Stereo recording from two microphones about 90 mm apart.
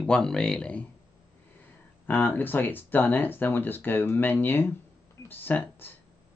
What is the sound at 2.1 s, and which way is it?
Speech, 20° left (ahead or behind).